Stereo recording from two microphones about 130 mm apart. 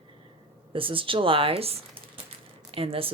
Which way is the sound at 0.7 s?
40° right (ahead or behind).